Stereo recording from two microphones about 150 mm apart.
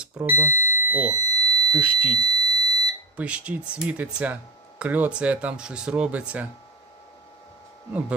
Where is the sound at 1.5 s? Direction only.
40° left (ahead or behind).